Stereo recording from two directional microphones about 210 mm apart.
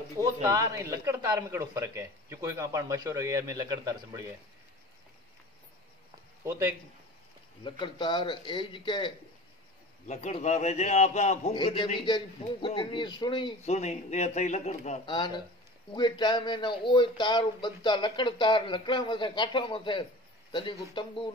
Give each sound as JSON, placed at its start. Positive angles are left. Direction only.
{"t": 0.2, "sound": "speech", "side_deg": -15}
{"t": 7.8, "sound": "speech", "side_deg": 20}
{"t": 10.0, "sound": "a man's voice", "side_deg": 35}
{"t": 13.7, "sound": "a man's voice", "side_deg": 35}
{"t": 15.0, "sound": "speech", "side_deg": 20}